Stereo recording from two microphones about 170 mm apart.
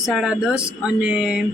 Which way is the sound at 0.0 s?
Centre (ahead or behind).